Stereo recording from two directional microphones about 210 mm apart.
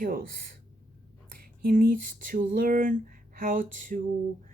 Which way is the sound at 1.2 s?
45° right (ahead or behind).